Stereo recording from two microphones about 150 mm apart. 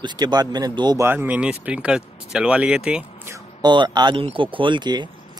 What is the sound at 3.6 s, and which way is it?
Speech, 30° right (ahead or behind).